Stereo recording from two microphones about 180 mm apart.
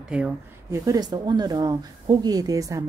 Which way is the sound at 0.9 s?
25° right (ahead or behind).